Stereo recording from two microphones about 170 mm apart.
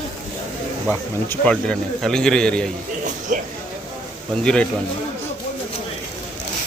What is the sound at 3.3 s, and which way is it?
Speech, 50° right (ahead or behind).